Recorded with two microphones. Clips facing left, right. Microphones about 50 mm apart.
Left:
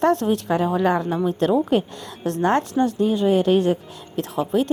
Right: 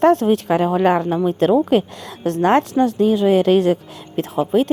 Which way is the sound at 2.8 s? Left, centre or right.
Right.